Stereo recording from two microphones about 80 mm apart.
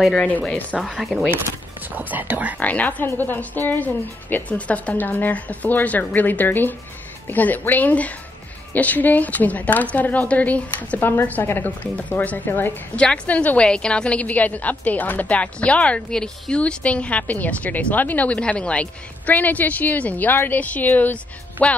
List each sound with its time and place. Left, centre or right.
0.1 s speech: centre
0.9 s speech: centre
2.0 s speech: right
2.6 s a woman's voice: centre
12.9 s a woman's voice: centre